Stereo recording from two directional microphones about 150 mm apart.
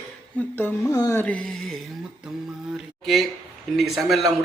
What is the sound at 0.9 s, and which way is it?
Speech, 20° left (ahead or behind).